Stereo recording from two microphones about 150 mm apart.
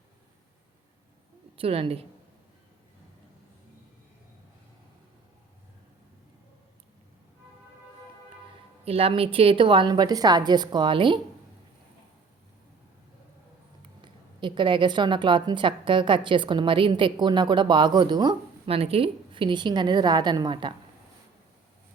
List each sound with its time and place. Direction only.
1.5 s a woman's voice: 40° right (ahead or behind)
8.8 s a woman's voice: 40° right (ahead or behind)
14.0 s a woman's voice: 35° right (ahead or behind)